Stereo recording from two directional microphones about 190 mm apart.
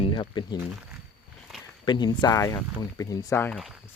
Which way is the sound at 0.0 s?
25° left (ahead or behind).